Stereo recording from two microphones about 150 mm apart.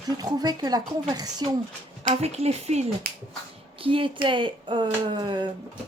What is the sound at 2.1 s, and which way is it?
Speech, 45° right (ahead or behind).